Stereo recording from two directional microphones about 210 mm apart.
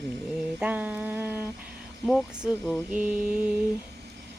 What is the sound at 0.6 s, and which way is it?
Speech, 5° right (ahead or behind).